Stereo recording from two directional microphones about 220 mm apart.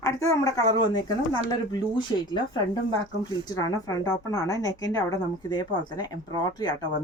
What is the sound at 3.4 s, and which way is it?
Speech, 15° left (ahead or behind).